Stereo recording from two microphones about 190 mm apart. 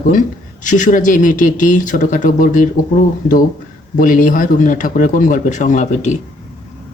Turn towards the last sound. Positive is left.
turn(degrees=35)  # may be behind; listen again after turning